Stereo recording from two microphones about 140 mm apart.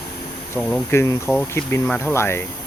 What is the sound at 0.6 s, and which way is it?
Speech, 20° left (ahead or behind).